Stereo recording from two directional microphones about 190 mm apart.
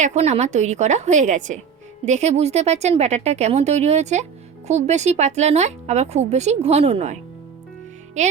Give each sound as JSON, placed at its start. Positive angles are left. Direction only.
{"t": 0.0, "sound": "speech", "side_deg": -35}